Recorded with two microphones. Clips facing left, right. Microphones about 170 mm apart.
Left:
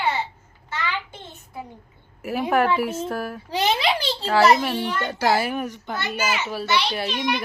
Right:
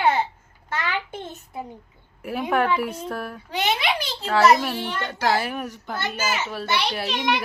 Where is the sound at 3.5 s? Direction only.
35° left (ahead or behind).